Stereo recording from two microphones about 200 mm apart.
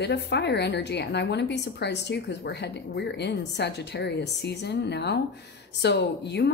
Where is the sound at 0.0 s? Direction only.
60° left (ahead or behind).